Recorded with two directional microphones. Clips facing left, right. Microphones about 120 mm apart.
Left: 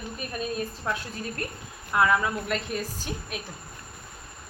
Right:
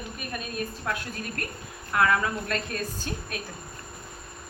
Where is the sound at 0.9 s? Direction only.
20° left (ahead or behind).